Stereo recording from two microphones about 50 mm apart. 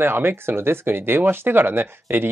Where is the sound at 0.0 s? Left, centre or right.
Right.